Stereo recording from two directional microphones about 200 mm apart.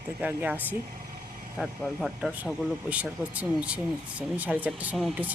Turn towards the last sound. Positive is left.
turn(degrees=-5)  # may be behind; listen again after turning